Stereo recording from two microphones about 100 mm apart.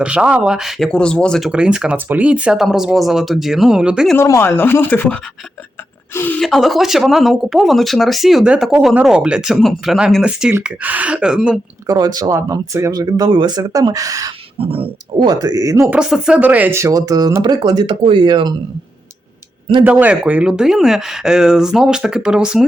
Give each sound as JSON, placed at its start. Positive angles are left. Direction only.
{"t": 0.0, "sound": "speech", "side_deg": -10}
{"t": 0.9, "sound": "speech", "side_deg": 10}
{"t": 1.5, "sound": "speech", "side_deg": -10}
{"t": 4.2, "sound": "speech", "side_deg": 25}
{"t": 6.4, "sound": "speech", "side_deg": 0}
{"t": 10.6, "sound": "speech", "side_deg": -15}
{"t": 11.9, "sound": "speech", "side_deg": -40}
{"t": 12.4, "sound": "speech", "side_deg": -30}
{"t": 14.6, "sound": "speech", "side_deg": -65}
{"t": 15.2, "sound": "speech", "side_deg": -40}
{"t": 15.9, "sound": "speech", "side_deg": -5}
{"t": 16.4, "sound": "speech", "side_deg": -15}
{"t": 16.7, "sound": "speech", "side_deg": -30}
{"t": 19.8, "sound": "speech", "side_deg": -15}